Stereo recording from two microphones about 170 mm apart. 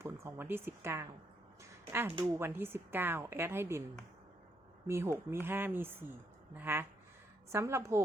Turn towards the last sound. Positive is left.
turn(degrees=-15)  # may be behind; listen again after turning